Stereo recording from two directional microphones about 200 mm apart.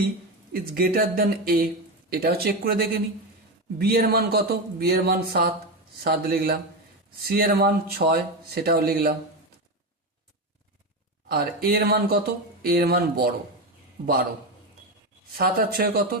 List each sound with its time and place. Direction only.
0.5 s speech: 45° right (ahead or behind)
11.3 s speech: 50° right (ahead or behind)
15.4 s speech: 50° right (ahead or behind)